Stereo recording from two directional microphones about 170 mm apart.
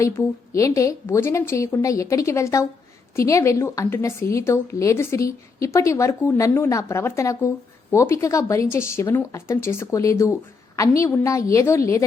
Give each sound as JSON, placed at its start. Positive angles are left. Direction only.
{"t": 0.0, "sound": "a woman's voice", "side_deg": 20}